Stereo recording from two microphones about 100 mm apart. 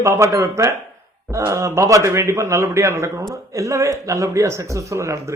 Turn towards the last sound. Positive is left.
turn(degrees=-30)  # may be behind; listen again after turning